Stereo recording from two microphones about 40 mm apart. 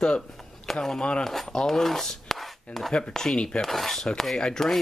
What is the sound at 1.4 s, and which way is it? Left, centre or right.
Speech, centre.